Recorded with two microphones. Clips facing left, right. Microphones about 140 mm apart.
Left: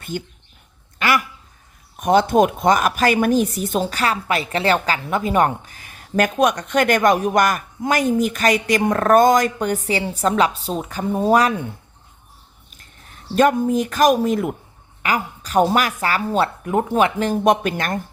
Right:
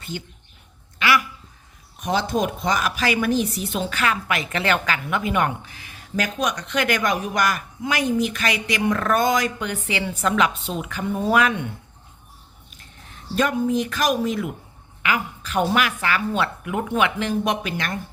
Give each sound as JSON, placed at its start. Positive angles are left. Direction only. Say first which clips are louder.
{"t": 0.1, "sound": "a woman's voice", "louder": "left 6 dB", "side_deg": 50}
{"t": 13.3, "sound": "a woman's voice", "louder": "left 5 dB", "side_deg": 45}